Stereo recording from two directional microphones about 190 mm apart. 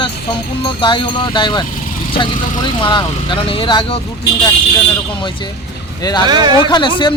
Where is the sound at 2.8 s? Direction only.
25° left (ahead or behind).